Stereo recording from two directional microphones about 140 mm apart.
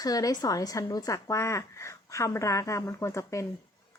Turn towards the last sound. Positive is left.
turn(degrees=20)  # may be behind; listen again after turning